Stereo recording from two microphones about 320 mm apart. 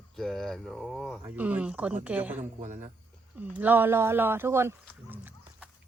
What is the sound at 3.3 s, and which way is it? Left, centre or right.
Speech, centre.